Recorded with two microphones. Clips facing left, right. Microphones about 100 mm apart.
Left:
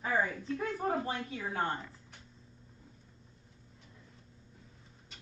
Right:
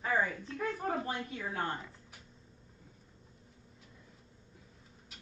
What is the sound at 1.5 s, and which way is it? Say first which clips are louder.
Speech: left 3 dB; 25° left (ahead or behind).